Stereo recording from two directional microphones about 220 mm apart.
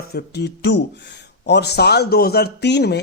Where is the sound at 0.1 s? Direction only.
45° left (ahead or behind).